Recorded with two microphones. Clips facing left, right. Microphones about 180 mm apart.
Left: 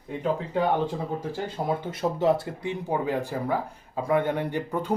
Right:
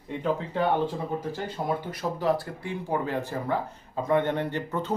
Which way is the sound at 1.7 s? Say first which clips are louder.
Left 3 dB; 25° left (ahead or behind).